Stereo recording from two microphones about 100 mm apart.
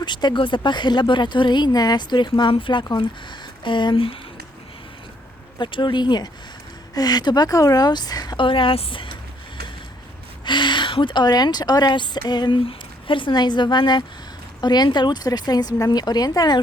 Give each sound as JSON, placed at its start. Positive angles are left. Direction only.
{"t": 0.0, "sound": "speech", "side_deg": 50}
{"t": 2.4, "sound": "speech", "side_deg": 60}
{"t": 5.5, "sound": "speech", "side_deg": 50}
{"t": 8.4, "sound": "speech", "side_deg": 60}
{"t": 10.4, "sound": "speech", "side_deg": 50}